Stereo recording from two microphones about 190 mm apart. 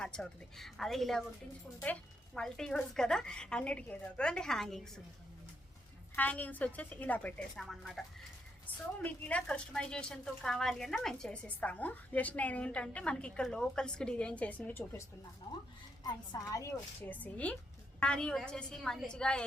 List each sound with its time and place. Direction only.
0.0 s a woman's voice: 5° left (ahead or behind)
6.1 s a woman's voice: 10° left (ahead or behind)
15.5 s a woman's voice: 20° left (ahead or behind); by 19.5 s 5° left (ahead or behind)